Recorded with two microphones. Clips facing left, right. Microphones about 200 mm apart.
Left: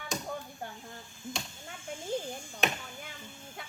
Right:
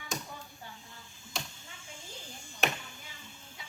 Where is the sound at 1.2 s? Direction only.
55° left (ahead or behind).